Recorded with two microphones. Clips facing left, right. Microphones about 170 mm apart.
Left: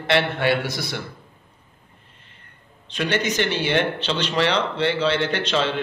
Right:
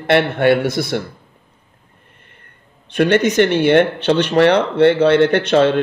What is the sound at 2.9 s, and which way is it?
Speech, 55° right (ahead or behind).